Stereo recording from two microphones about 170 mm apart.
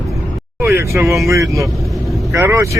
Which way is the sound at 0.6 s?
15° right (ahead or behind).